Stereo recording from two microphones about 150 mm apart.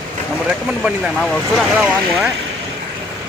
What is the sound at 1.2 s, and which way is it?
Speech, 5° left (ahead or behind).